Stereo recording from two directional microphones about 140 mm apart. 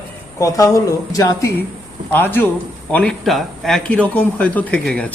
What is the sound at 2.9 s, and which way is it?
Speech, centre (ahead or behind).